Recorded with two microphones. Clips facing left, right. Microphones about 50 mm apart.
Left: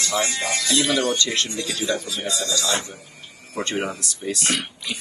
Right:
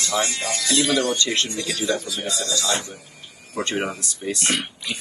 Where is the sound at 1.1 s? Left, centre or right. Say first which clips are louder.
Even; right.